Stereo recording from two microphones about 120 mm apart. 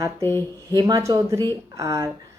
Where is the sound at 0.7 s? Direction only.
25° right (ahead or behind).